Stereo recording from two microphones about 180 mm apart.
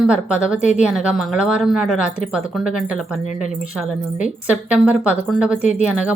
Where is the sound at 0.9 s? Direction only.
5° right (ahead or behind).